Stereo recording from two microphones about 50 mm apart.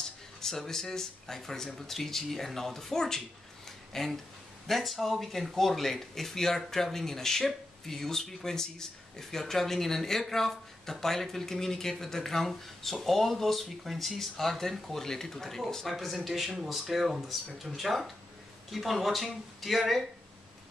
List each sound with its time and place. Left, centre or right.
0.4 s speech: centre